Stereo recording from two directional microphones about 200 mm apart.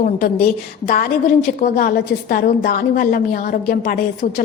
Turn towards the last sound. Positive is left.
turn(degrees=50)  # may be behind; listen again after turning